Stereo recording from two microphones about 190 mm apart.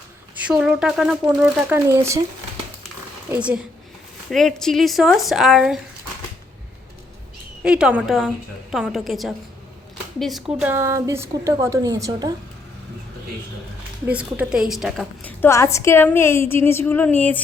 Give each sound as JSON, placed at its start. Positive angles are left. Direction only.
{"t": 0.4, "sound": "speech", "side_deg": -5}
{"t": 3.3, "sound": "a woman's voice", "side_deg": -5}
{"t": 7.6, "sound": "a woman's voice", "side_deg": -5}
{"t": 14.1, "sound": "a woman's voice", "side_deg": -5}